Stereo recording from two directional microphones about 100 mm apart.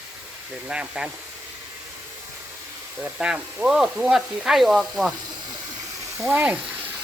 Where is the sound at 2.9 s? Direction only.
10° right (ahead or behind).